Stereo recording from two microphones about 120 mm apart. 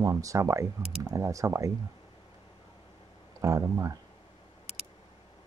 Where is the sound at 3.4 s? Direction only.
30° right (ahead or behind).